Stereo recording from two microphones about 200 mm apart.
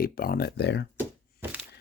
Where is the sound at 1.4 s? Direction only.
5° right (ahead or behind).